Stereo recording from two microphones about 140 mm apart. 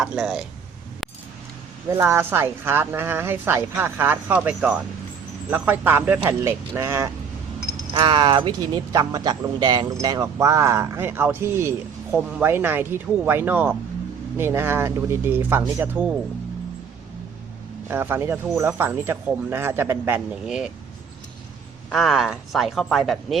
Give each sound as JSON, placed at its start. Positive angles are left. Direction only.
{"t": 0.0, "sound": "speech", "side_deg": -5}
{"t": 2.0, "sound": "a woman's voice", "side_deg": -15}
{"t": 7.9, "sound": "a woman's voice", "side_deg": -35}
{"t": 17.8, "sound": "a woman's voice", "side_deg": -15}
{"t": 20.4, "sound": "speech", "side_deg": -5}
{"t": 21.8, "sound": "speech", "side_deg": 0}